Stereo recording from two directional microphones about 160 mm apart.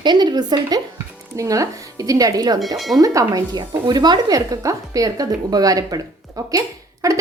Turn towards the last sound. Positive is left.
turn(degrees=-20)  # may be behind; listen again after turning